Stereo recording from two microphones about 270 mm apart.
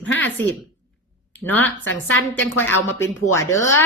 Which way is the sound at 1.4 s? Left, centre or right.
Centre.